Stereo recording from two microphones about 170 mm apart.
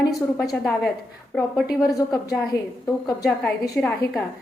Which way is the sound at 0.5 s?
Centre (ahead or behind).